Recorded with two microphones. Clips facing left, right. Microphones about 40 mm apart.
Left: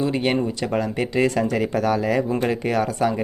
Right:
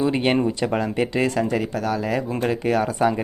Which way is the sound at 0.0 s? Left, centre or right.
Centre.